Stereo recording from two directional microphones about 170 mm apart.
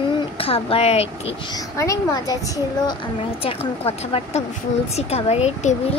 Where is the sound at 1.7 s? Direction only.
20° left (ahead or behind).